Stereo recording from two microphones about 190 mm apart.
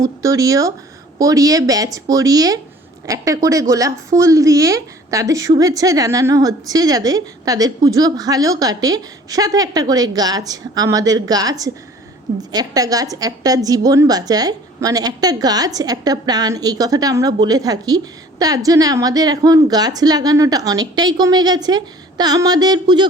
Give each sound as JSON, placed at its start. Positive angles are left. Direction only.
{"t": 0.0, "sound": "a woman's voice", "side_deg": -15}